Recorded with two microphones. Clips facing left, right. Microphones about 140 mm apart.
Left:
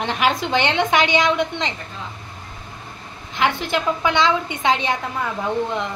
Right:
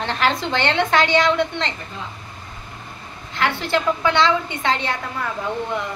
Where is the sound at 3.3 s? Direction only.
15° left (ahead or behind).